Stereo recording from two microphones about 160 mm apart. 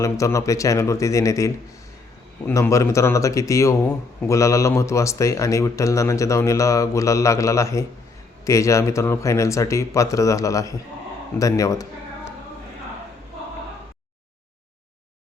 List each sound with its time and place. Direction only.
0.0 s a man's voice: 20° left (ahead or behind)